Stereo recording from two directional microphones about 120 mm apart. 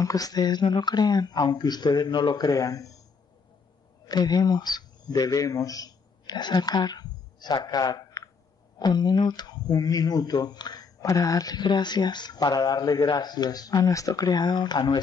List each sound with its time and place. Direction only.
0.0 s speech: 30° left (ahead or behind)
4.1 s speech: 35° left (ahead or behind)